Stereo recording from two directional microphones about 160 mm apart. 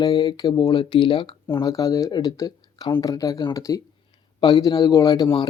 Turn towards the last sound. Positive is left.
turn(degrees=30)  # may be behind; listen again after turning